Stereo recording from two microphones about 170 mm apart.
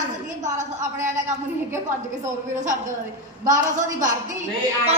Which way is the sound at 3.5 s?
50° right (ahead or behind).